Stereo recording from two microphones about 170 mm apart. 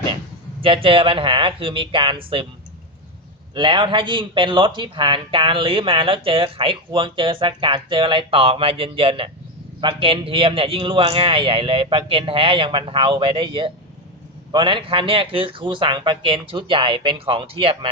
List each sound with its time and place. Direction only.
0.6 s a man's voice: 30° right (ahead or behind)
3.5 s a man's voice: 30° right (ahead or behind)